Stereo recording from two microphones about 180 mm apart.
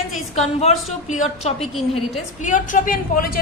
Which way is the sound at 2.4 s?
45° left (ahead or behind).